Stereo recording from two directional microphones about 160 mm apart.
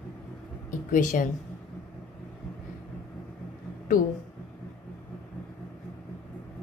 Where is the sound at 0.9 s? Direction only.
55° left (ahead or behind).